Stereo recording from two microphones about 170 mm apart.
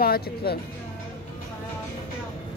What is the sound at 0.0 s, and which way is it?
Speech, 65° left (ahead or behind).